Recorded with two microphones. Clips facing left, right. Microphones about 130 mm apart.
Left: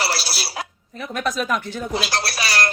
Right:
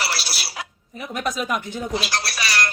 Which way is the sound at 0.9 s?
15° right (ahead or behind).